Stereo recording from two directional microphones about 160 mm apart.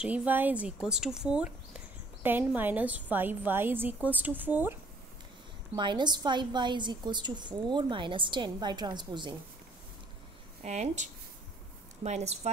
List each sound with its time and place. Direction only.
0.0 s a woman's voice: 10° right (ahead or behind)
5.8 s a woman's voice: 30° right (ahead or behind)
10.6 s speech: 45° right (ahead or behind)